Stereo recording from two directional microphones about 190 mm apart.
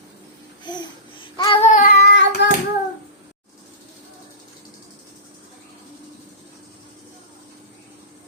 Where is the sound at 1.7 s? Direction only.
45° left (ahead or behind); by 2.5 s 60° left (ahead or behind).